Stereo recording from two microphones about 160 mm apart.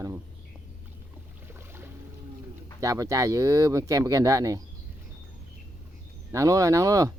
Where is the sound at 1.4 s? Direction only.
15° right (ahead or behind).